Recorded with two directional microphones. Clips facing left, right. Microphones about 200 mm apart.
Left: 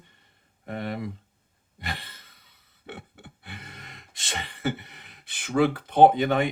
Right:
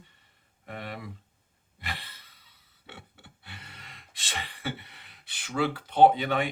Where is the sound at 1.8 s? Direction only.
45° left (ahead or behind).